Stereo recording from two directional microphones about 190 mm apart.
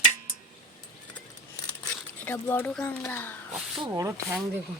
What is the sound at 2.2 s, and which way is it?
Speech, 10° left (ahead or behind).